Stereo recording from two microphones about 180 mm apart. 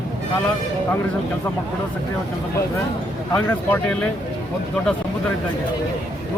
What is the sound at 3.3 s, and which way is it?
Speech, 5° left (ahead or behind).